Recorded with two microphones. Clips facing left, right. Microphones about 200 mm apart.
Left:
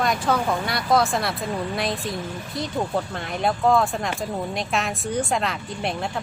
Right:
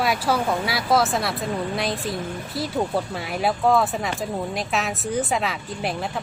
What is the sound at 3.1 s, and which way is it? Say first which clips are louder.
Speech: right 1 dB; 5° right (ahead or behind).